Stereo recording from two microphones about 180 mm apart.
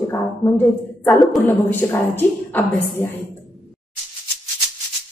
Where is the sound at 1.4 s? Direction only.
10° left (ahead or behind).